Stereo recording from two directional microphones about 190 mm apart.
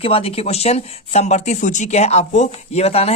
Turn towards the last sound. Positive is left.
turn(degrees=30)  # may be behind; listen again after turning